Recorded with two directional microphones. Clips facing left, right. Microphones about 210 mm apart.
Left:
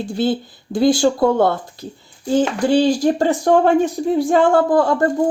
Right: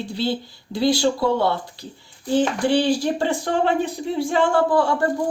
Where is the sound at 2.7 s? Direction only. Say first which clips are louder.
Left 7 dB; 45° left (ahead or behind).